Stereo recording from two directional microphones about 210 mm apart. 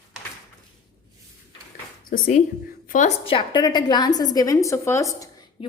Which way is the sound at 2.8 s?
40° left (ahead or behind).